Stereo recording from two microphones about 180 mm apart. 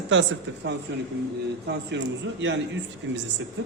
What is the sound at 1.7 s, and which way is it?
Speech, 80° right.